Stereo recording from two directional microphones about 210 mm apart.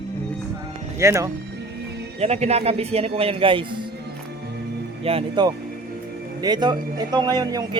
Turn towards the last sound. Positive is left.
turn(degrees=-20)  # may be behind; listen again after turning